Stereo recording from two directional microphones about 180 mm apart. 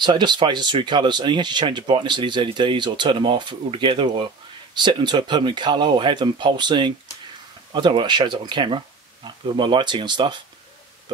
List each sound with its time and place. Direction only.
0.0 s speech: 25° right (ahead or behind)